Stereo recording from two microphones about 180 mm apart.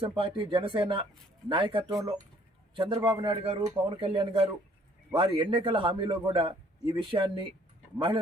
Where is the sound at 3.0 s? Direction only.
10° right (ahead or behind).